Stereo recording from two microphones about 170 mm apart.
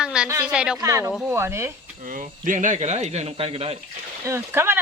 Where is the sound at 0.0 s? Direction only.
5° right (ahead or behind).